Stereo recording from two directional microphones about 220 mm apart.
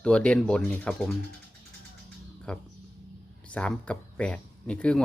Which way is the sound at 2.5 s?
5° left (ahead or behind).